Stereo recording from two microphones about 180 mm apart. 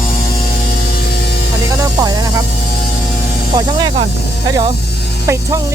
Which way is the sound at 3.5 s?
25° right (ahead or behind).